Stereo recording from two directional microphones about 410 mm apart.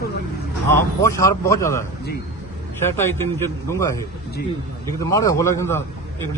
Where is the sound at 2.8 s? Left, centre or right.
Centre.